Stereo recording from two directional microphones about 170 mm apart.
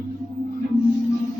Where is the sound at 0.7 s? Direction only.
35° left (ahead or behind).